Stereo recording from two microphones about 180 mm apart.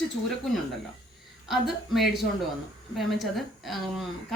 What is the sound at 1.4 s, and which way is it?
Speech, centre (ahead or behind).